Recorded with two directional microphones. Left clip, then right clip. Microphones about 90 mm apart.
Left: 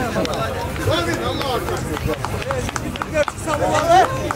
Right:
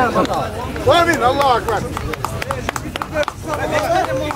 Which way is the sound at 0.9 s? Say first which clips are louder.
Right 9 dB; 40° right (ahead or behind).